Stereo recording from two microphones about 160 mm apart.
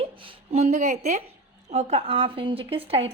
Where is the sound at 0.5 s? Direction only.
45° right (ahead or behind).